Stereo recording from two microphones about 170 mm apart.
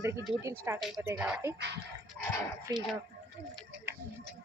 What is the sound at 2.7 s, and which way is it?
Speech, 20° right (ahead or behind).